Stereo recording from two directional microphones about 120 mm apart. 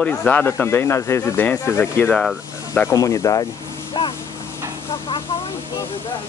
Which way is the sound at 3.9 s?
40° left (ahead or behind).